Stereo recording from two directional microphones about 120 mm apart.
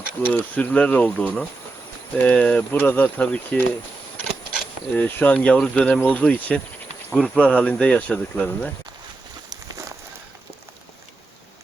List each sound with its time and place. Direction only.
0.3 s speech: 15° left (ahead or behind)
4.9 s speech: 15° left (ahead or behind)
9.5 s a sound: 30° right (ahead or behind)